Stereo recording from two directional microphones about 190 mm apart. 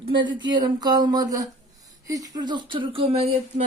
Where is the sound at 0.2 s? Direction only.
25° right (ahead or behind).